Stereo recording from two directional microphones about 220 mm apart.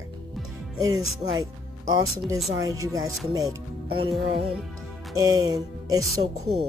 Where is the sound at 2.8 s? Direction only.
15° right (ahead or behind).